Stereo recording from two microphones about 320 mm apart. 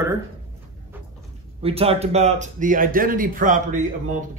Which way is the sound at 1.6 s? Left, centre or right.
Centre.